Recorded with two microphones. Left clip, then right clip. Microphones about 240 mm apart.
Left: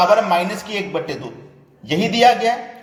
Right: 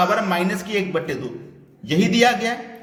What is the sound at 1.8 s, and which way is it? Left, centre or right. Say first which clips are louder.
Speech: left 4 dB; centre.